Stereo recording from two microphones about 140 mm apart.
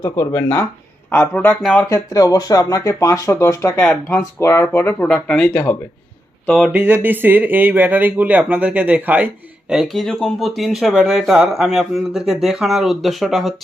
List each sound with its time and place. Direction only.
0.0 s speech: 20° left (ahead or behind)
6.7 s speech: 10° right (ahead or behind)